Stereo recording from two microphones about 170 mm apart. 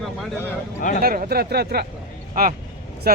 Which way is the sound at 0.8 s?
50° left (ahead or behind).